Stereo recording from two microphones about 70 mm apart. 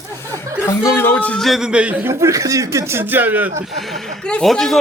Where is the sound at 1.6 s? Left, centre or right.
Centre.